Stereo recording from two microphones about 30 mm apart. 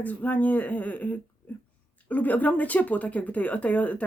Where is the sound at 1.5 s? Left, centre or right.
Left.